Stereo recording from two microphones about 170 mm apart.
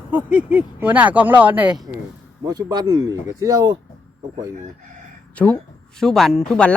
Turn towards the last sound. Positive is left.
turn(degrees=5)  # may be behind; listen again after turning